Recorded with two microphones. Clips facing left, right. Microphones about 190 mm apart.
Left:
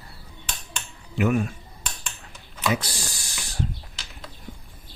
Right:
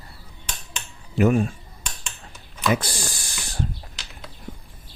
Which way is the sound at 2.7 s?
50° right (ahead or behind).